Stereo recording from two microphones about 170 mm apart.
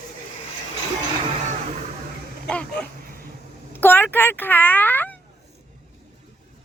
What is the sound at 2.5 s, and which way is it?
A child's voice, 5° left (ahead or behind).